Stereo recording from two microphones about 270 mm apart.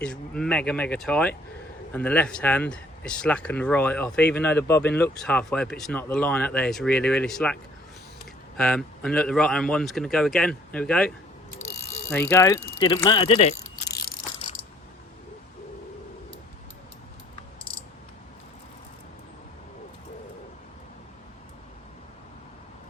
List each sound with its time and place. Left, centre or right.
0.0 s speech: centre
8.5 s speech: centre
11.6 s mechanisms: left
12.1 s speech: centre
13.9 s ratchet: left